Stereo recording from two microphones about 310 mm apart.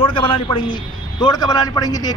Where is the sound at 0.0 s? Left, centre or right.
Centre.